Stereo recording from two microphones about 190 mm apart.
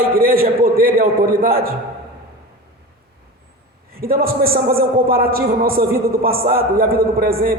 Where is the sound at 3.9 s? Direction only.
50° right (ahead or behind).